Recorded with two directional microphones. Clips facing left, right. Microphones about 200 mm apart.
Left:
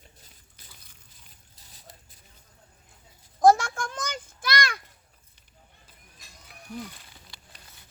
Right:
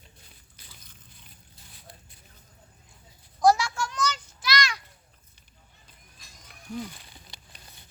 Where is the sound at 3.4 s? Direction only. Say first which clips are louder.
Left 2 dB; 50° left (ahead or behind).